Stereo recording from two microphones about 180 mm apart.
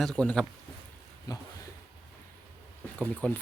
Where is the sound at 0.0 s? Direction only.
5° left (ahead or behind).